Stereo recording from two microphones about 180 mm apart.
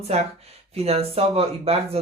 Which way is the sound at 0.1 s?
35° right (ahead or behind).